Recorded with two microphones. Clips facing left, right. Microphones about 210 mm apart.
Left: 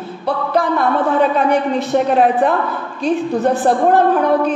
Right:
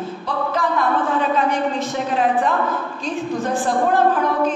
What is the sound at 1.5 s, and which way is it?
A man's voice, 65° left (ahead or behind).